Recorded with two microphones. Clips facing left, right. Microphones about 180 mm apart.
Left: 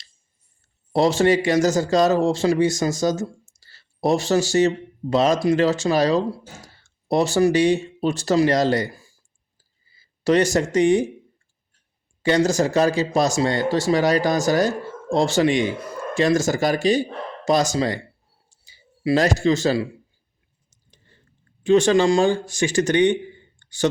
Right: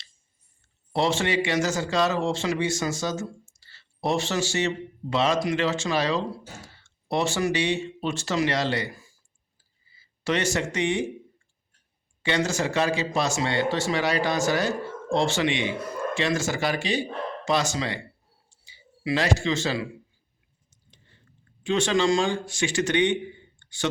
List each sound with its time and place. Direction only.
0.9 s speech: 40° left (ahead or behind)
10.2 s speech: 40° left (ahead or behind)
12.2 s speech: 40° left (ahead or behind)
18.4 s a sound: 40° left (ahead or behind)
21.6 s speech: 40° left (ahead or behind)